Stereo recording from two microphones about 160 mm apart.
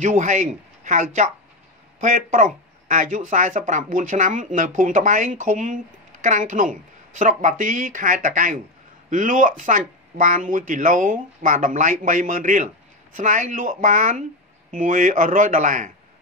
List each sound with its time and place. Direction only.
0.0 s speech: 50° right (ahead or behind)